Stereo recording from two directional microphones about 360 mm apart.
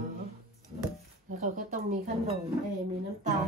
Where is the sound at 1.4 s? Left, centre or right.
Right.